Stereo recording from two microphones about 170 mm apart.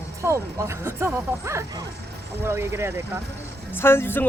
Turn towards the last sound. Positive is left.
turn(degrees=15)  # may be behind; listen again after turning